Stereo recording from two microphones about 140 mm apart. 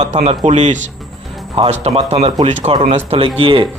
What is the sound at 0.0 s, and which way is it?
A man's voice, 55° right (ahead or behind).